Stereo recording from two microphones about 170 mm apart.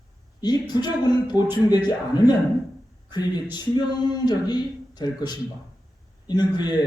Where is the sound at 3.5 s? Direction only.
25° left (ahead or behind).